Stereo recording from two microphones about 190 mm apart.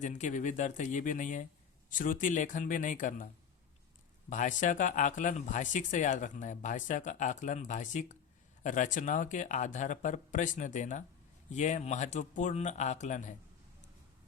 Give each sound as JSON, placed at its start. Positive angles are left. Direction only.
{"t": 0.0, "sound": "a man's voice", "side_deg": 40}
{"t": 4.3, "sound": "speech", "side_deg": 40}